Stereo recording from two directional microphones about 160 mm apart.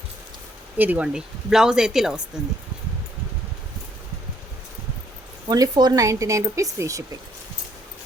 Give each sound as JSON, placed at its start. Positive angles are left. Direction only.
{"t": 0.8, "sound": "speech", "side_deg": -10}
{"t": 5.5, "sound": "speech", "side_deg": -25}